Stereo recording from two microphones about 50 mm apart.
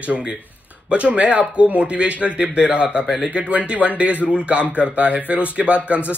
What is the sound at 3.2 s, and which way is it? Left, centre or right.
Speech, right.